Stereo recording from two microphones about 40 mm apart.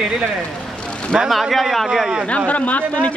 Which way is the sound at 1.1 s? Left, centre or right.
Centre.